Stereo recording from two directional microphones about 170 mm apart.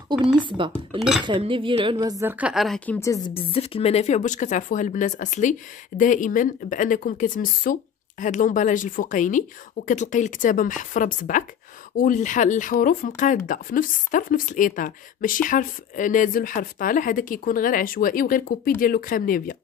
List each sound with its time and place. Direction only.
0.6 s speech: 30° right (ahead or behind)
0.9 s speech: centre (ahead or behind)
1.2 s speech: 30° right (ahead or behind)
2.4 s speech: centre (ahead or behind)
3.3 s a woman's voice: 35° left (ahead or behind); by 19.5 s 55° left (ahead or behind)